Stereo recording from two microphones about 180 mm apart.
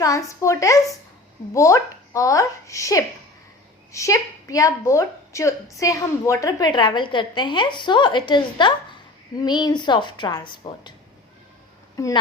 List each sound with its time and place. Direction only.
0.0 s a woman's voice: 20° left (ahead or behind)